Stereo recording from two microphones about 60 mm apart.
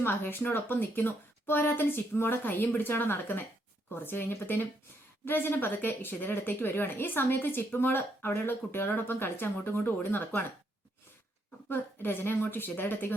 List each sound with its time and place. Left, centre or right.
0.0 s speech: left
11.7 s speech: left